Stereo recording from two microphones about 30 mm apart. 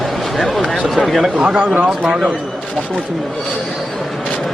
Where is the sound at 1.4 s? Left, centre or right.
Right.